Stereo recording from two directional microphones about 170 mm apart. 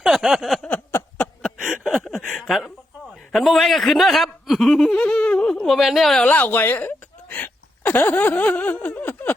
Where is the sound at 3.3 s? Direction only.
Centre (ahead or behind).